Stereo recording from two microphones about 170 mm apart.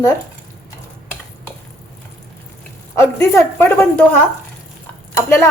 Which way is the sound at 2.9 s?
15° left (ahead or behind).